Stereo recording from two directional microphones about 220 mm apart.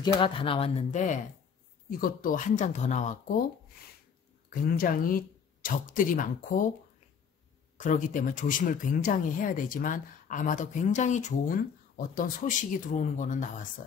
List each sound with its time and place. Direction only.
0.0 s speech: 25° left (ahead or behind)
4.5 s speech: 40° left (ahead or behind)
7.7 s speech: 35° left (ahead or behind)